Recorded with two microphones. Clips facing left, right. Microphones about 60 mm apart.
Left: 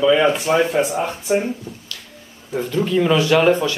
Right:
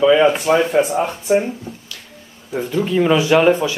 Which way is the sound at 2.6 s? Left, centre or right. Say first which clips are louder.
Right 1 dB; centre.